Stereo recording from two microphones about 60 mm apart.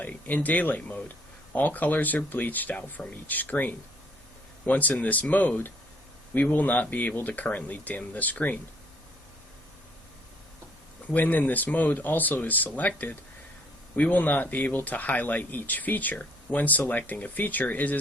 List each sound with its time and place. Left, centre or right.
0.0 s speech: left
11.1 s speech: left